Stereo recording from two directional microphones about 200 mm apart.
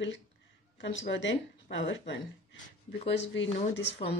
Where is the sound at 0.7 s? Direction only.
60° left (ahead or behind).